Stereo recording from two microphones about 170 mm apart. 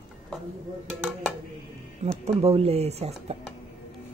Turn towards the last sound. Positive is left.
turn(degrees=-40)  # may be behind; listen again after turning